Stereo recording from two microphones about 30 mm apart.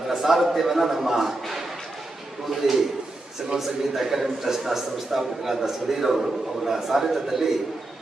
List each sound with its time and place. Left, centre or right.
0.1 s a man's voice: centre
2.6 s a man's voice: centre